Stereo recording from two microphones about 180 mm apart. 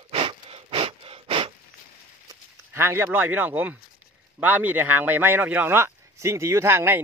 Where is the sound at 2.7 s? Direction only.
15° right (ahead or behind).